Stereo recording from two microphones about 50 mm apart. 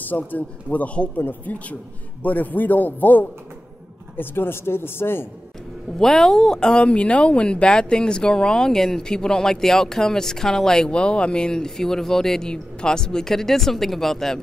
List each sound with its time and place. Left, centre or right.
0.0 s a man's voice: left
4.2 s speech: left
5.9 s speech: centre